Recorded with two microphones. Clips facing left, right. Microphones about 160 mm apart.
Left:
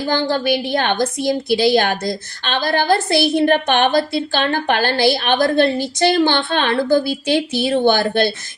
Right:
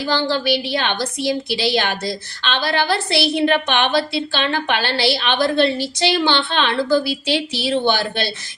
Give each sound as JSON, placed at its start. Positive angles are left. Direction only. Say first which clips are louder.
{"t": 0.1, "sound": "a woman's voice", "louder": "left 1 dB", "side_deg": 45}